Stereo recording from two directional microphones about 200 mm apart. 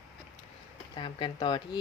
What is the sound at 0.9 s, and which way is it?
Speech, 25° left (ahead or behind).